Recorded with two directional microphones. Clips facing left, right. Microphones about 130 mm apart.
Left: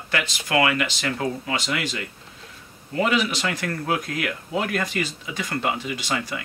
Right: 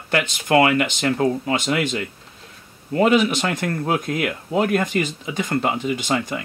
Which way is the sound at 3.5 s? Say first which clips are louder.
Right 3 dB; 35° right (ahead or behind).